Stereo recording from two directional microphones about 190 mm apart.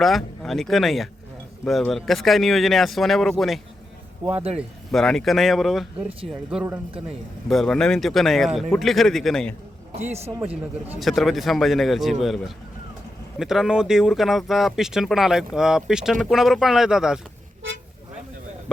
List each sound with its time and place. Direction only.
0.0 s speech: centre (ahead or behind)
4.2 s speech: 10° right (ahead or behind)
4.5 s speech: centre (ahead or behind)
9.9 s a man's voice: 35° right (ahead or behind)
10.2 s speech: 10° right (ahead or behind)